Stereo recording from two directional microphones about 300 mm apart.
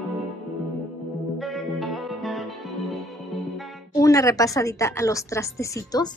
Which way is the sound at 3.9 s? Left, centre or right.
Centre.